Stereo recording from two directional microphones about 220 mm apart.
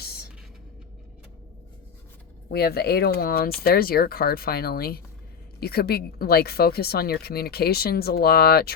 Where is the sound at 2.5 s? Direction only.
45° left (ahead or behind).